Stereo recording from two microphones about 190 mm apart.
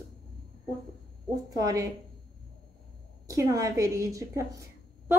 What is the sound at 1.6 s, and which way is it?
Speech, 20° right (ahead or behind).